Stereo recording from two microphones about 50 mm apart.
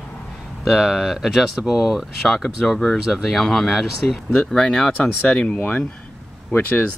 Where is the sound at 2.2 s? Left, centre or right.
Centre.